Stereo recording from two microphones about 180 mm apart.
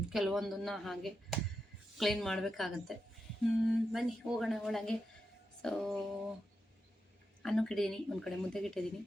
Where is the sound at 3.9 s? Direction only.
Centre (ahead or behind).